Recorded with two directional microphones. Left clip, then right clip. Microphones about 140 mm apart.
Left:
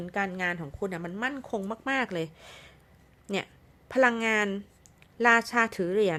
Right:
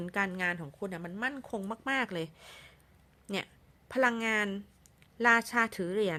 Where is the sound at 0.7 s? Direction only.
Centre (ahead or behind).